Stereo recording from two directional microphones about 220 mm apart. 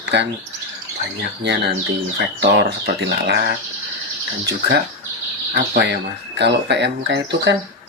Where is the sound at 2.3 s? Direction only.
50° right (ahead or behind).